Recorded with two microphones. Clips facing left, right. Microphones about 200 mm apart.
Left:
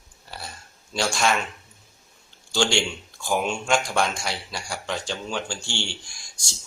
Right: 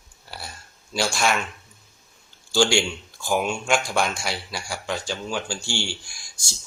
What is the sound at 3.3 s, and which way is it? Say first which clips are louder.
Speech: right 1 dB; 5° right (ahead or behind).